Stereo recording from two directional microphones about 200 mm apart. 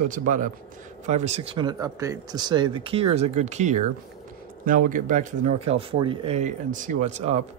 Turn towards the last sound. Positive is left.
turn(degrees=-35)  # may be behind; listen again after turning